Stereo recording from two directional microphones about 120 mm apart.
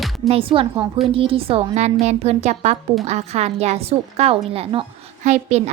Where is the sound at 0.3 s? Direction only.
50° right (ahead or behind).